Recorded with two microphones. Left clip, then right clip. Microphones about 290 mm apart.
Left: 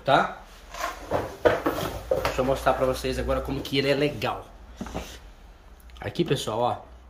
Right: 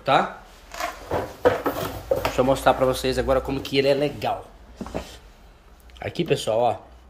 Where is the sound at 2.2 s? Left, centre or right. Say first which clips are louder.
Right 5 dB; right.